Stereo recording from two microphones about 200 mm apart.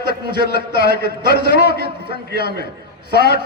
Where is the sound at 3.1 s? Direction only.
55° left (ahead or behind).